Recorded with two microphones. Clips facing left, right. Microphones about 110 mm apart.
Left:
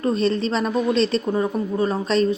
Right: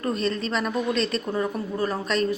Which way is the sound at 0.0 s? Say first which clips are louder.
Left 5 dB; 30° left (ahead or behind).